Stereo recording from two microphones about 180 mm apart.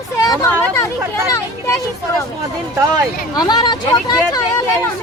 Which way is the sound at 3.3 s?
20° left (ahead or behind).